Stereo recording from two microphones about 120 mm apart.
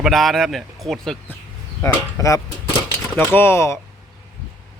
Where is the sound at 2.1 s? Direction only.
25° left (ahead or behind).